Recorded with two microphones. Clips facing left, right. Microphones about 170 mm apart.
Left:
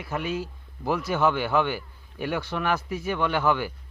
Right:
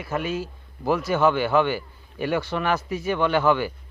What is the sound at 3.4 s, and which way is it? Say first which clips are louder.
Speech: right 4 dB; 10° left (ahead or behind).